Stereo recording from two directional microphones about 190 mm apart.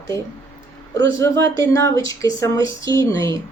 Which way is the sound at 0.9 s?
15° left (ahead or behind).